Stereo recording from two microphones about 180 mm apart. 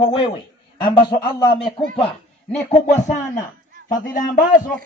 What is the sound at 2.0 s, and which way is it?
A man's voice, 40° left (ahead or behind).